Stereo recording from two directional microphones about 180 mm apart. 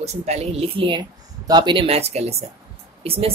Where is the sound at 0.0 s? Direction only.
35° right (ahead or behind).